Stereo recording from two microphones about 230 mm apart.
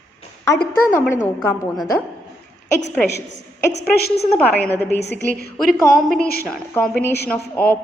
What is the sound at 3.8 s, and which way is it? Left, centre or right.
Speech, left.